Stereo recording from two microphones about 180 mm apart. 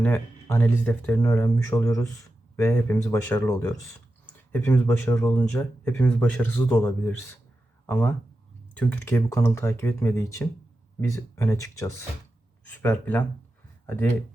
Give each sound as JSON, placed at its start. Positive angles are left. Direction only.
{"t": 0.0, "sound": "speech", "side_deg": 15}